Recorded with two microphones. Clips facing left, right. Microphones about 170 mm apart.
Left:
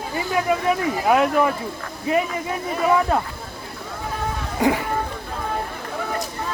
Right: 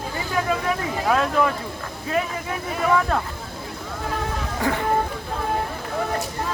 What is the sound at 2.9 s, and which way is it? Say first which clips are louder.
Speech: left 2 dB; 15° left (ahead or behind).